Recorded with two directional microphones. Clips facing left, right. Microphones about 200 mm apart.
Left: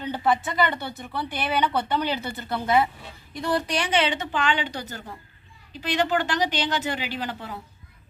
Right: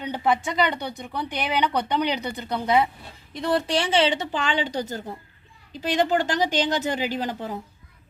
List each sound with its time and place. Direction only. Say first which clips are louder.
0.0 s a woman's voice: even; 15° right (ahead or behind); by 7.5 s 40° right (ahead or behind)